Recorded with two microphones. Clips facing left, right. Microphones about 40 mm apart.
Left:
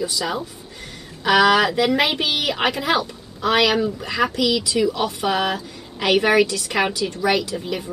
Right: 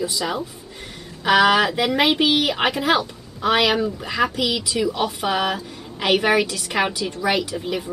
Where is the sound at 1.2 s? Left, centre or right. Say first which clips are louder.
Even; centre.